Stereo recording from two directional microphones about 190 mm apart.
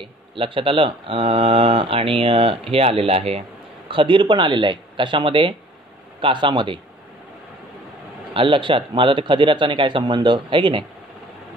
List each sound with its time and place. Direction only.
0.0 s speech: 25° right (ahead or behind)
8.3 s speech: 25° right (ahead or behind)